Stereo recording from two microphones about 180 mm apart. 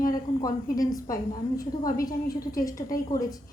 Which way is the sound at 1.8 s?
55° left (ahead or behind).